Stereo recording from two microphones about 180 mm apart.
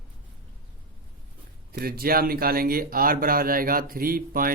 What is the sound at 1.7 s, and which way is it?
Speech, 60° right (ahead or behind).